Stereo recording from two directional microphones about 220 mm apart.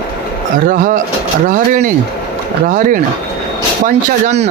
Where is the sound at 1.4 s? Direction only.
35° right (ahead or behind).